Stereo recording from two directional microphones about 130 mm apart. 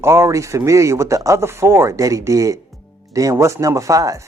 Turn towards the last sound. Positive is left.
turn(degrees=-25)  # may be behind; listen again after turning